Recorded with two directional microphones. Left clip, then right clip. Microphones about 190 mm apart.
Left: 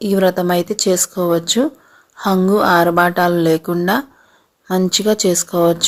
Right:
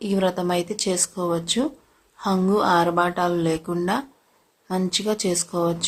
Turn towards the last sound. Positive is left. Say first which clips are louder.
# left 9 dB
turn(degrees=30)  # may be behind; listen again after turning